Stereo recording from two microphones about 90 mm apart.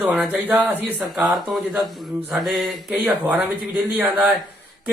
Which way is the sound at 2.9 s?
15° right (ahead or behind).